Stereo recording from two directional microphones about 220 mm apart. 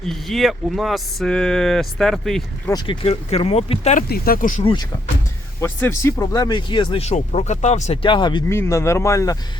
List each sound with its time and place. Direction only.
0.0 s speech: centre (ahead or behind)
2.6 s speech: 20° left (ahead or behind)
4.1 s speech: 40° left (ahead or behind)
4.6 s speech: 20° left (ahead or behind)